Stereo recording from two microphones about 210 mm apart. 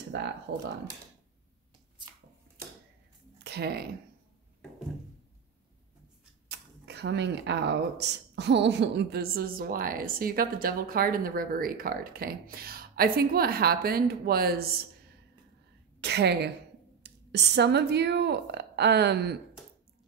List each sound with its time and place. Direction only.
0.1 s speech: 55° right (ahead or behind)
3.4 s speech: 50° right (ahead or behind)
6.5 s speech: 55° right (ahead or behind)
16.0 s speech: 50° right (ahead or behind)